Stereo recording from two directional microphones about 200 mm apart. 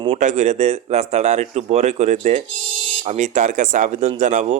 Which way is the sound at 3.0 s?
35° right (ahead or behind).